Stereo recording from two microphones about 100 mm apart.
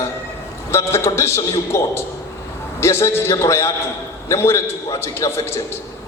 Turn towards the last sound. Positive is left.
turn(degrees=25)  # may be behind; listen again after turning